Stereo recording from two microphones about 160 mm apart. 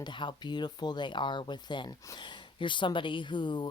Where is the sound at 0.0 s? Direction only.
30° left (ahead or behind).